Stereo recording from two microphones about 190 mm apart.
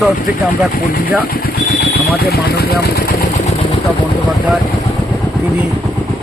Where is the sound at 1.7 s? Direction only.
55° left (ahead or behind).